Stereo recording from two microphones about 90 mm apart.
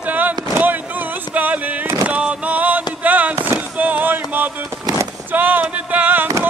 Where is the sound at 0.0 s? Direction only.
20° right (ahead or behind).